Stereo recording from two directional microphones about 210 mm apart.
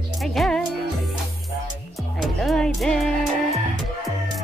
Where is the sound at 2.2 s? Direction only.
Centre (ahead or behind).